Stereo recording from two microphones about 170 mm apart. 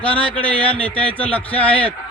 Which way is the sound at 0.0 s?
5° left (ahead or behind).